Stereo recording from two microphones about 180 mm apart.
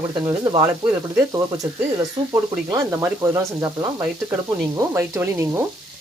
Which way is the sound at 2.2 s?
30° right (ahead or behind).